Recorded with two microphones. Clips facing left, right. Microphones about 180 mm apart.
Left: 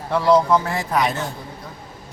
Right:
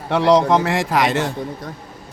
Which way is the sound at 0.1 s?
85° right.